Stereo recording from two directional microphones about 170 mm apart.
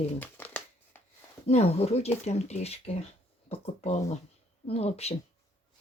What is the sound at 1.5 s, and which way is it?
Speech, 40° left (ahead or behind).